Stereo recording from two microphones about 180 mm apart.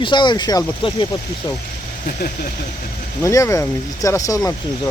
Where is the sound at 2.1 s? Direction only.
55° left (ahead or behind).